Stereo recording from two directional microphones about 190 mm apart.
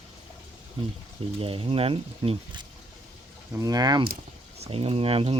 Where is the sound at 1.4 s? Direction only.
30° right (ahead or behind).